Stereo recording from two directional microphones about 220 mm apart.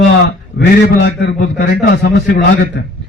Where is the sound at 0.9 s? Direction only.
50° left (ahead or behind).